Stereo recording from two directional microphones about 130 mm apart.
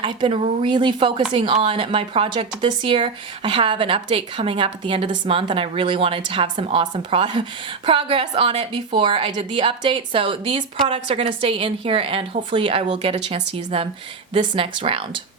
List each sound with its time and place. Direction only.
0.0 s a woman's voice: 40° right (ahead or behind)
12.9 s a woman's voice: 55° right (ahead or behind)